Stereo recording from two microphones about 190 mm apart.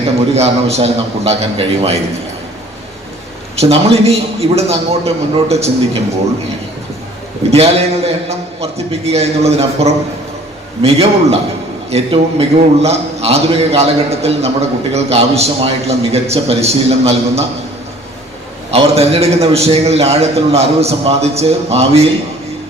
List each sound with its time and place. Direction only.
0.3 s a man's voice: 35° right (ahead or behind)
3.6 s a man's voice: 35° right (ahead or behind)
7.5 s a man's voice: 30° right (ahead or behind)
18.7 s a man's voice: 30° right (ahead or behind)